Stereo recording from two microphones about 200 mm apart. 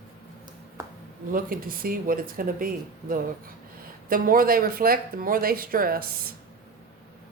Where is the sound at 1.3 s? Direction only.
45° right (ahead or behind).